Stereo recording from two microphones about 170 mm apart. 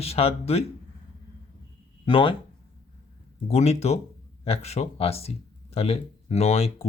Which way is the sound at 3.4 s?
40° left (ahead or behind).